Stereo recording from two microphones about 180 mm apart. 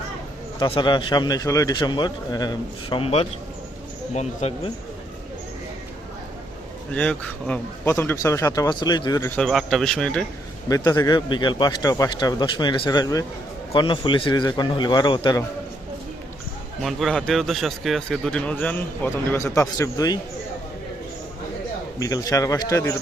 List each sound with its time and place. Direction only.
0.6 s a man's voice: 25° left (ahead or behind)
6.9 s speech: 5° left (ahead or behind)
9.4 s a man's voice: centre (ahead or behind)
10.7 s a man's voice: 20° left (ahead or behind)
16.8 s a man's voice: centre (ahead or behind); by 20.1 s 20° left (ahead or behind)
21.9 s a man's voice: 20° left (ahead or behind)